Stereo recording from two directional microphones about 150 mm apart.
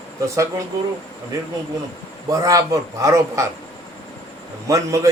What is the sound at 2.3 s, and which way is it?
A man's voice, 20° right (ahead or behind).